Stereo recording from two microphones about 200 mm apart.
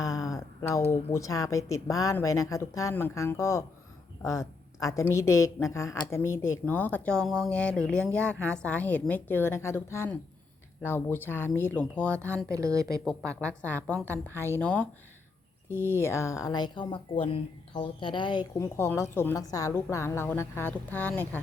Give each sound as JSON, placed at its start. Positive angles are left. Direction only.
{"t": 0.3, "sound": "a sound", "side_deg": 15}
{"t": 1.1, "sound": "a woman's voice", "side_deg": 15}
{"t": 12.5, "sound": "a woman's voice", "side_deg": -15}
{"t": 13.4, "sound": "speech", "side_deg": 5}